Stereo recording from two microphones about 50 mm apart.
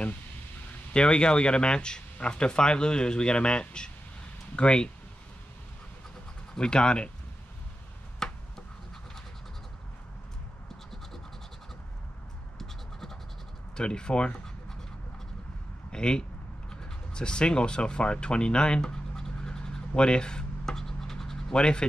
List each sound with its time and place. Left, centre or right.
0.9 s speech: centre
6.5 s speech: centre
8.2 s a sound: centre
12.5 s scratch: centre
13.7 s speech: centre
15.9 s speech: centre
19.9 s rub: centre